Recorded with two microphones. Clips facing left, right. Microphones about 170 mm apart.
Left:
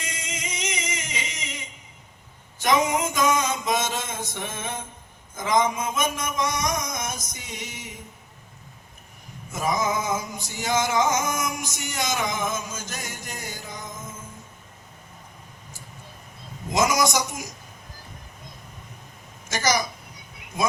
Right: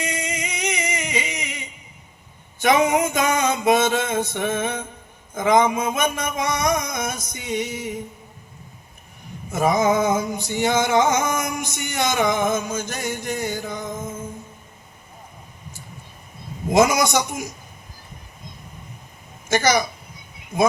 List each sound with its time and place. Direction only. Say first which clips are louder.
0.0 s music: right 8 dB; 65° right (ahead or behind)
2.6 s music: right 4 dB; 60° right (ahead or behind)
9.5 s music: right 7 dB; 60° right (ahead or behind)
16.6 s music: right 5 dB; 60° right (ahead or behind)
19.5 s music: right 5 dB; 60° right (ahead or behind)